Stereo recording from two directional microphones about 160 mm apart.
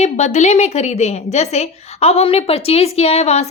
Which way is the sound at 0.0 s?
45° left (ahead or behind).